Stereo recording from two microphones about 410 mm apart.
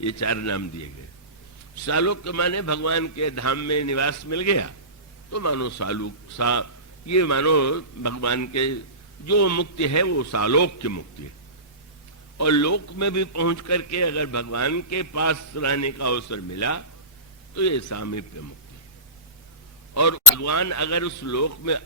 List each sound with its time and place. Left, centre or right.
0.0 s a man's voice: left
12.4 s a man's voice: left
19.9 s a man's voice: left